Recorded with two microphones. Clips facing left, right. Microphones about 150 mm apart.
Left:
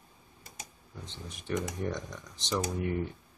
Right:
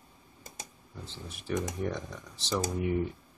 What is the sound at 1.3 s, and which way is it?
Speech, 5° right (ahead or behind).